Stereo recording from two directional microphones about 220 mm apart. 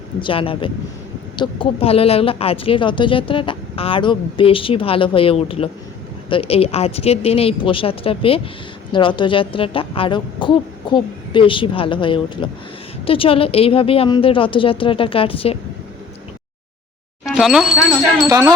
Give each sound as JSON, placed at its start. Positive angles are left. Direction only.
{"t": 0.2, "sound": "a woman's voice", "side_deg": 25}
{"t": 17.2, "sound": "a sound", "side_deg": 0}
{"t": 18.3, "sound": "speech", "side_deg": -15}